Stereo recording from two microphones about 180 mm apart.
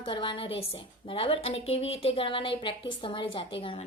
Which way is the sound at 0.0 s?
30° left (ahead or behind).